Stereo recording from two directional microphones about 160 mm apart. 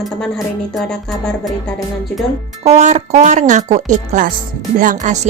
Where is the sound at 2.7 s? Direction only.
45° right (ahead or behind).